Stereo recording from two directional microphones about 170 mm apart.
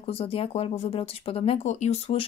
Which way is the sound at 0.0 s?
35° left (ahead or behind).